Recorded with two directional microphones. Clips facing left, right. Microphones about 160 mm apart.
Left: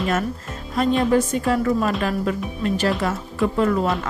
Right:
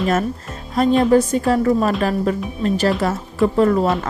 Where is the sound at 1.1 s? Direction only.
35° right (ahead or behind).